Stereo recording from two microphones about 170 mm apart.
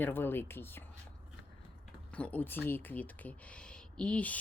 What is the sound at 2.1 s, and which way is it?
Speech, 5° left (ahead or behind).